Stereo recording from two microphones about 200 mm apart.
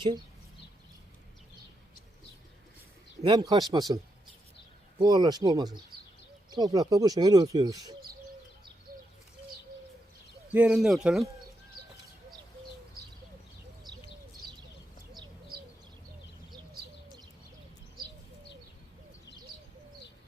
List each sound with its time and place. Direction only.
3.2 s speech: 20° right (ahead or behind)
10.5 s speech: 5° right (ahead or behind)